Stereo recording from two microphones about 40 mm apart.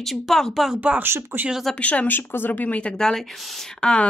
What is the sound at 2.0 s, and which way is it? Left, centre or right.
Speech, left.